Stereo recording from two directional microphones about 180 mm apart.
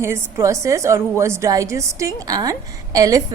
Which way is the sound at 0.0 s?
15° right (ahead or behind).